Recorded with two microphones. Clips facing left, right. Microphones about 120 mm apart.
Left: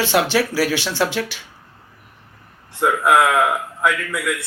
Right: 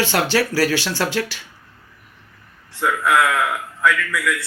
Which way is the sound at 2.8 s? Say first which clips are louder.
Left 2 dB; 25° left (ahead or behind).